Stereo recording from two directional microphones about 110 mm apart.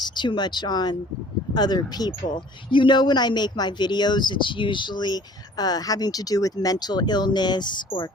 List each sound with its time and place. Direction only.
0.0 s speech: 45° left (ahead or behind)